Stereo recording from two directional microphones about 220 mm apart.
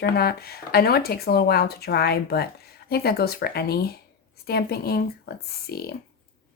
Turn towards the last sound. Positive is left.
turn(degrees=45)  # may be behind; listen again after turning